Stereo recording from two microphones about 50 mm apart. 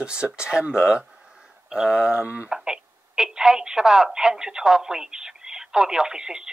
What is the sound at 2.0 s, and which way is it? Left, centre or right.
Speech, right.